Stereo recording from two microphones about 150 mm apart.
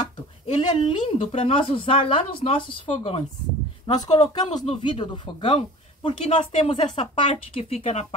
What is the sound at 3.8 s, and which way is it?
Speech, 25° left (ahead or behind).